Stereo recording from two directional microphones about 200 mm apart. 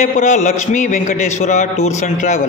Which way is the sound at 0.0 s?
40° left (ahead or behind).